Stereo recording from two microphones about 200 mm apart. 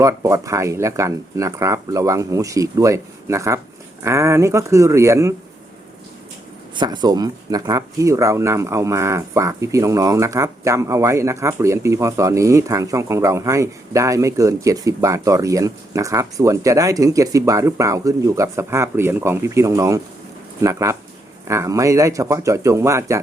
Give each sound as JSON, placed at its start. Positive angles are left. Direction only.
{"t": 0.0, "sound": "speech", "side_deg": -15}
{"t": 6.7, "sound": "speech", "side_deg": -20}